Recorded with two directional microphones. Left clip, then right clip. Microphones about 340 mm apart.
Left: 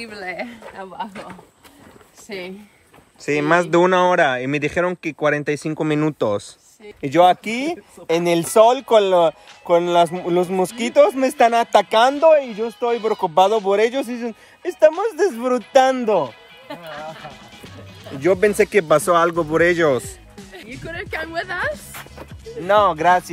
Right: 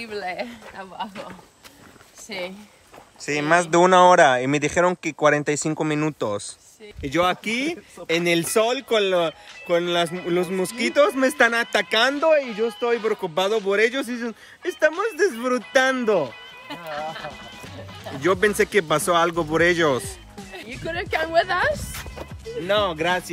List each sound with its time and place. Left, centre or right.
0.0 s speech: centre
2.2 s speech: centre
20.9 s a woman's voice: right
22.1 s speech: centre